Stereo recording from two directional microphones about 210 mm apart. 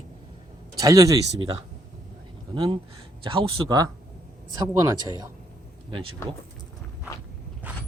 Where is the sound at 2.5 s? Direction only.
25° right (ahead or behind).